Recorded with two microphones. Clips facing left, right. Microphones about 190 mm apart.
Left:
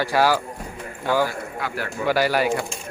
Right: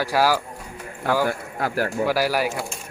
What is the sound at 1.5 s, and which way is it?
Speech, 40° right (ahead or behind).